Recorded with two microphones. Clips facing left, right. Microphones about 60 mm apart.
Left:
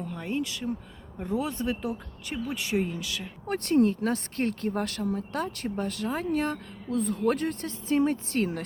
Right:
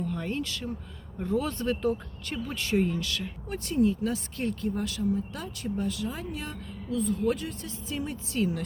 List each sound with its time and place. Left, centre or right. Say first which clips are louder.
0.0 s speech: even; centre
3.4 s speech: left 3 dB; left